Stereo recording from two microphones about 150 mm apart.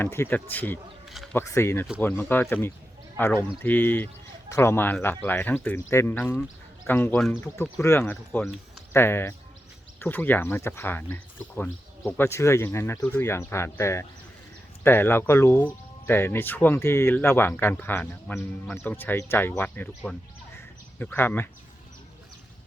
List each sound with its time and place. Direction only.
0.0 s speech: 15° left (ahead or behind)
21.0 s speech: 10° left (ahead or behind)